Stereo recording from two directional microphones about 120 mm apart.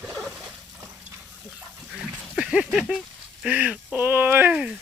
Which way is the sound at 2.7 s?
5° right (ahead or behind).